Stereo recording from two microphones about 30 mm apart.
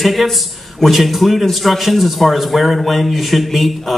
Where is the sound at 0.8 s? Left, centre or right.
Centre.